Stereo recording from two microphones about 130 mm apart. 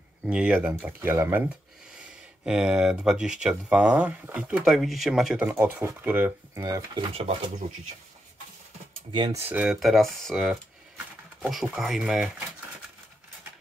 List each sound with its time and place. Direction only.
0.3 s speech: 10° right (ahead or behind)
2.4 s speech: 5° right (ahead or behind)
5.5 s speech: 15° right (ahead or behind)
6.6 s speech: 25° right (ahead or behind)
7.2 s speech: 50° right (ahead or behind)
9.5 s speech: 5° right (ahead or behind)